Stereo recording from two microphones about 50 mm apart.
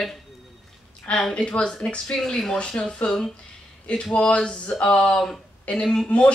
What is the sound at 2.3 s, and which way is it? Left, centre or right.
Speech, centre.